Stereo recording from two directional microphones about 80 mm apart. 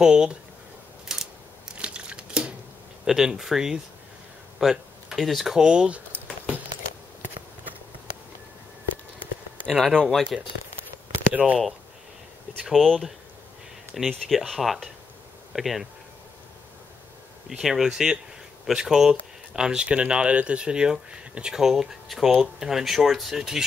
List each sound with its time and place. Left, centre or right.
0.0 s speech: centre
1.0 s a sound: centre
3.1 s speech: centre
9.7 s speech: centre
11.4 s speech: centre
12.6 s speech: centre
17.5 s speech: centre